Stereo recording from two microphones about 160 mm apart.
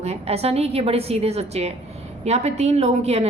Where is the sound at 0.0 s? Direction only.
40° right (ahead or behind).